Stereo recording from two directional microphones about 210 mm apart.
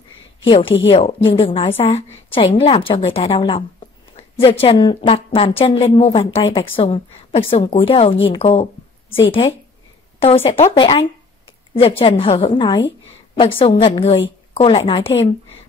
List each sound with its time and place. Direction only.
0.5 s a woman's voice: 25° left (ahead or behind)